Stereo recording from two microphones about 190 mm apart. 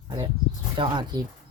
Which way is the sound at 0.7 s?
25° right (ahead or behind).